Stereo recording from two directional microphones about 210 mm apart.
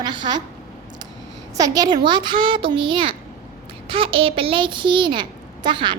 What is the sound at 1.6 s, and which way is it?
A child's voice, 20° right (ahead or behind).